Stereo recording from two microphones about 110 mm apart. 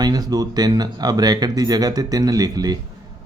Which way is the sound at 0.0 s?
35° right (ahead or behind).